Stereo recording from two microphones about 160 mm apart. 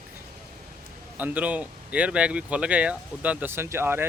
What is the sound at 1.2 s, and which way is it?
Speech, 10° right (ahead or behind).